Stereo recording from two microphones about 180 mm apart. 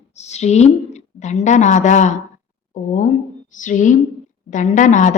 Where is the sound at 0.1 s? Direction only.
40° left (ahead or behind).